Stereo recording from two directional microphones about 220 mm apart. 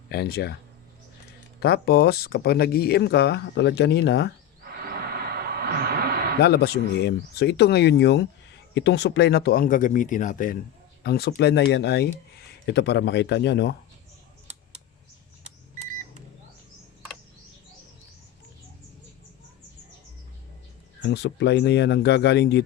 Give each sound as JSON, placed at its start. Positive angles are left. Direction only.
{"t": 0.1, "sound": "speech", "side_deg": 45}
{"t": 1.5, "sound": "speech", "side_deg": 45}
{"t": 4.6, "sound": "a sound", "side_deg": -45}
{"t": 6.4, "sound": "speech", "side_deg": 50}
{"t": 21.0, "sound": "speech", "side_deg": 50}